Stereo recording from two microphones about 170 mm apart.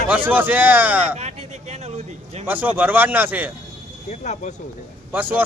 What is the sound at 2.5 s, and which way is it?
Speech, 10° right (ahead or behind).